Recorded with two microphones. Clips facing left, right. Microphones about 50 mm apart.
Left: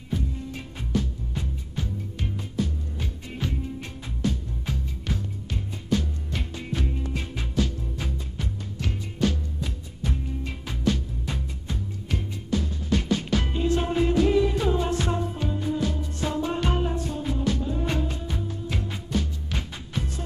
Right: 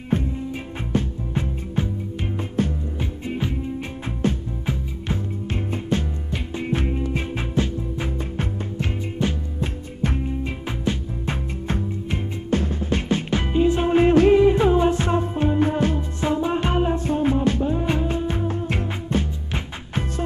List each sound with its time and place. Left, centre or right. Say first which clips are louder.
0.1 s music: right 7 dB; right
0.9 s music: right 4 dB; right
3.0 s music: right 6 dB; right
4.6 s music: right 4 dB; right
9.6 s music: right 8 dB; right
10.4 s music: right 2 dB; right
12.1 s music: right 3 dB; right
13.9 s music: right 9 dB; right
14.3 s music: right 7 dB; right
16.2 s music: right 5 dB; right